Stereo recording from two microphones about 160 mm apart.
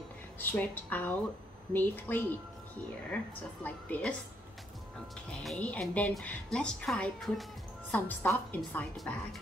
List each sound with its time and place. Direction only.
0.4 s a woman's voice: 10° left (ahead or behind)
3.6 s a woman's voice: 10° left (ahead or behind)
5.4 s a woman's voice: 5° left (ahead or behind)